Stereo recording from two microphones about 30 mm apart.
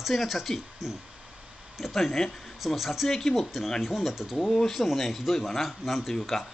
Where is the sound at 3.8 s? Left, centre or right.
Centre.